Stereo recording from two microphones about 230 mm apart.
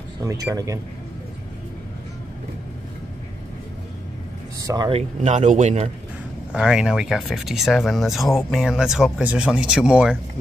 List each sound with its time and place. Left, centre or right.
0.2 s speech: centre
4.6 s speech: centre
6.5 s speech: centre